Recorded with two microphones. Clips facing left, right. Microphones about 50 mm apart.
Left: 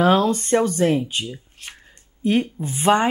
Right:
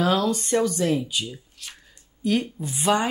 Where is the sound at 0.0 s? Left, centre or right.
Left.